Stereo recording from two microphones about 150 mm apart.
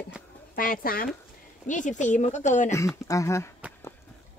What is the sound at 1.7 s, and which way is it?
Speech, 55° left (ahead or behind).